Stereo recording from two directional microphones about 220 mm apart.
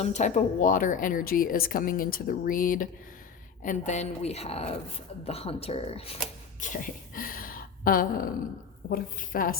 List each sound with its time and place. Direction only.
0.0 s a woman's voice: 30° left (ahead or behind)